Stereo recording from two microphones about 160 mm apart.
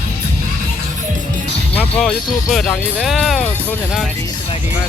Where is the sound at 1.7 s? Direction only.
5° left (ahead or behind).